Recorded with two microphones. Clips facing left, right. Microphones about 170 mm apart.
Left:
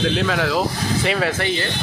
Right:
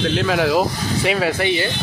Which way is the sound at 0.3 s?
15° right (ahead or behind).